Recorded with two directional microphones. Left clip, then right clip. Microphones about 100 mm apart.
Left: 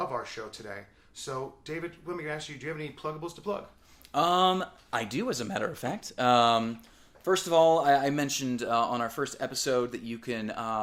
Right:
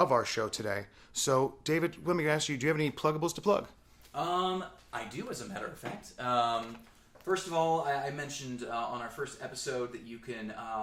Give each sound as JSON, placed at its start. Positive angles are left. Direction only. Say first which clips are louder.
{"t": 0.0, "sound": "speech", "louder": "right 6 dB", "side_deg": -40}
{"t": 4.1, "sound": "speech", "louder": "left 7 dB", "side_deg": 40}